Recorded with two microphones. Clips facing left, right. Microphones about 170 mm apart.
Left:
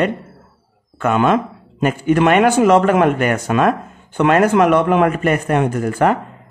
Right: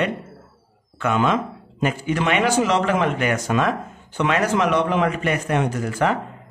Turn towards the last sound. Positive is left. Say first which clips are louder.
# left 5 dB
turn(degrees=55)  # may be behind; listen again after turning